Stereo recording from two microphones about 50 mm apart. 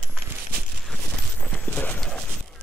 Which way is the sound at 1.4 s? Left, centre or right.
Left.